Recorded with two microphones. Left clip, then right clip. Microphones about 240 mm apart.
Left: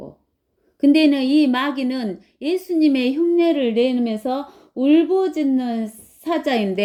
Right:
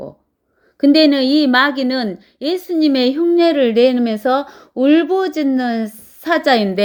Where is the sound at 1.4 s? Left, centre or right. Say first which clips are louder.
Right 6 dB; centre.